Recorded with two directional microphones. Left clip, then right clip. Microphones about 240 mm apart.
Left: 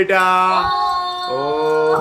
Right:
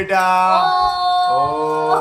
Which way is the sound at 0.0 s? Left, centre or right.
Centre.